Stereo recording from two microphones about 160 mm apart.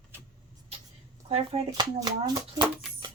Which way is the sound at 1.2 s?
40° right (ahead or behind).